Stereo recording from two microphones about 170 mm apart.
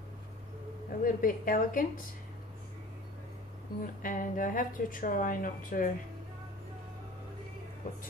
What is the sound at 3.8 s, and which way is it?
A woman's voice, 55° left (ahead or behind).